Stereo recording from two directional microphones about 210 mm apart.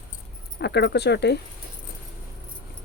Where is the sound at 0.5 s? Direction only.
55° left (ahead or behind).